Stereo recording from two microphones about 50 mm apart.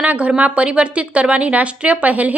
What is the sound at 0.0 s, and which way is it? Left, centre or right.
A woman's voice, right.